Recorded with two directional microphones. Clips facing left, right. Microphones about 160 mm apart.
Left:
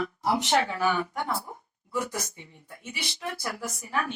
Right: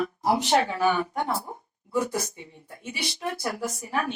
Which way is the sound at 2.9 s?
55° right (ahead or behind).